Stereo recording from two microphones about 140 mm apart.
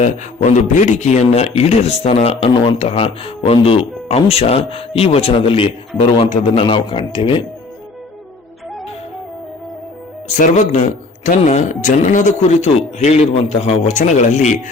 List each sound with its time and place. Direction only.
0.0 s speech: 60° left (ahead or behind); by 7.4 s 40° left (ahead or behind)
10.2 s speech: 55° left (ahead or behind)